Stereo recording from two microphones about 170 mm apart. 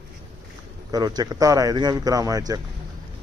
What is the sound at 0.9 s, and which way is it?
A man's voice, 25° right (ahead or behind).